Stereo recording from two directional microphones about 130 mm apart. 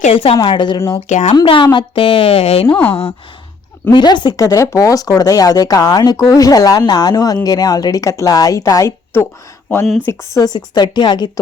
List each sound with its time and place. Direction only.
0.1 s a woman's voice: 45° left (ahead or behind)
0.9 s speech: 65° left (ahead or behind)
1.5 s a woman's voice: 40° left (ahead or behind)
2.6 s speech: 15° left (ahead or behind)
3.9 s speech: 35° left (ahead or behind)
10.3 s a woman's voice: 30° left (ahead or behind)